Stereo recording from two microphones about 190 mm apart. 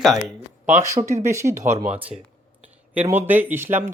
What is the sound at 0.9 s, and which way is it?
Speech, 15° right (ahead or behind).